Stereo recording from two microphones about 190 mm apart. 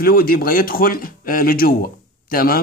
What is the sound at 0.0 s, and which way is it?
A man's voice, 50° left (ahead or behind).